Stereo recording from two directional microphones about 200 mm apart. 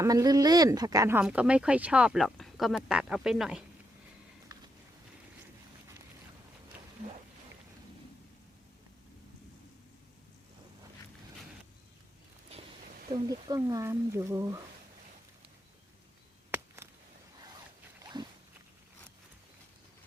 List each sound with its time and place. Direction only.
0.0 s speech: 15° right (ahead or behind); by 3.6 s centre (ahead or behind)
13.1 s speech: 20° right (ahead or behind)
16.5 s a sound: 10° right (ahead or behind)
18.0 s zipper: 20° right (ahead or behind)